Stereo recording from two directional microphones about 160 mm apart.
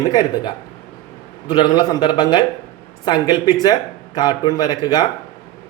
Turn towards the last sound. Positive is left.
turn(degrees=25)  # may be behind; listen again after turning